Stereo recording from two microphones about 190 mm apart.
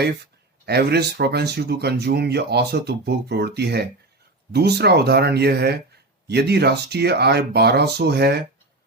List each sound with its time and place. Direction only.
0.6 s speech: 60° right (ahead or behind)